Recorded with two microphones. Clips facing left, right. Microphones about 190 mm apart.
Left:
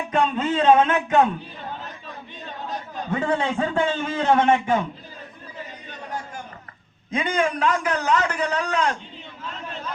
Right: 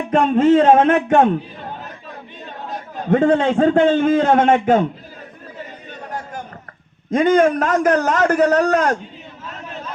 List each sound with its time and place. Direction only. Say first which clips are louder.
0.1 s a man's voice: right 10 dB; 50° right (ahead or behind)
3.1 s a man's voice: right 9 dB; 60° right (ahead or behind)
7.1 s a man's voice: right 10 dB; 45° right (ahead or behind)